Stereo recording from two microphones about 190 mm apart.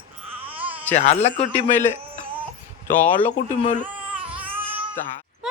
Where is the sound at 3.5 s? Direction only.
40° left (ahead or behind).